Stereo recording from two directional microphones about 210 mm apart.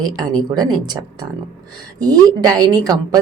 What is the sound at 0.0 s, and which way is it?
Speech, 20° right (ahead or behind).